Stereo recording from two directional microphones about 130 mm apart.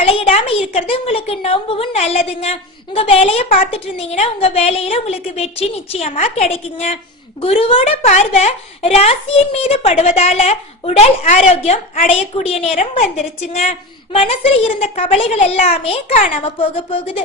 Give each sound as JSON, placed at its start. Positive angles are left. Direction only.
{"t": 0.1, "sound": "a woman's voice", "side_deg": 50}
{"t": 7.4, "sound": "a woman's voice", "side_deg": 45}
{"t": 8.0, "sound": "a woman's voice", "side_deg": 60}
{"t": 16.1, "sound": "a woman's voice", "side_deg": 90}
{"t": 16.4, "sound": "a woman's voice", "side_deg": 45}